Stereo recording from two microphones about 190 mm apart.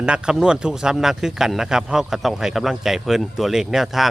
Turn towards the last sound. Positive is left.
turn(degrees=0)  # may be behind; listen again after turning